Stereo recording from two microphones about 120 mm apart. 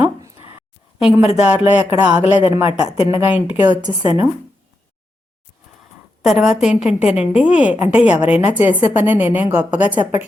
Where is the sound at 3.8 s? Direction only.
35° right (ahead or behind).